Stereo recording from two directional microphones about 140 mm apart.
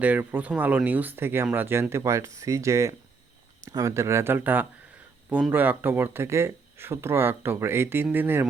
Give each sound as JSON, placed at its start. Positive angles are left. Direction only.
{"t": 0.0, "sound": "speech", "side_deg": -10}